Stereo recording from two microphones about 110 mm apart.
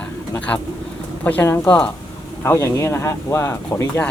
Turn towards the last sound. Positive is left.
turn(degrees=25)  # may be behind; listen again after turning